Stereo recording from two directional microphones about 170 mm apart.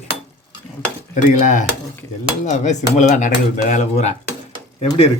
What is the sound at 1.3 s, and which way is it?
Speech, 45° left (ahead or behind).